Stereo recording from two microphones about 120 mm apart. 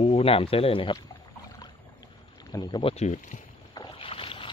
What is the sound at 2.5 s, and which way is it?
Speech, 35° left (ahead or behind).